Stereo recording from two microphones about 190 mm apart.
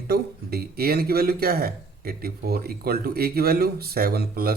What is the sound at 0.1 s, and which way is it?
Speech, 55° right (ahead or behind).